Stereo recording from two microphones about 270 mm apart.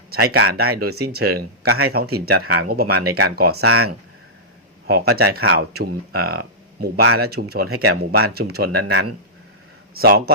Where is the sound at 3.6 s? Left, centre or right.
Right.